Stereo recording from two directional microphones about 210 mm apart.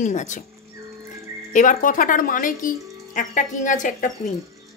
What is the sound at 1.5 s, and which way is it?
A woman's voice, 40° left (ahead or behind).